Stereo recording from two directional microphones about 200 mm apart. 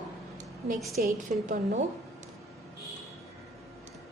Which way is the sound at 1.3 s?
35° right (ahead or behind).